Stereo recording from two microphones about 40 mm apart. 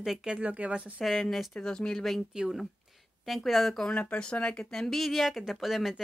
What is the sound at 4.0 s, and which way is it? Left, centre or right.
Speech, left.